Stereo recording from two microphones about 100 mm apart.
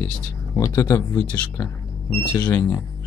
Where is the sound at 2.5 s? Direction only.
30° left (ahead or behind).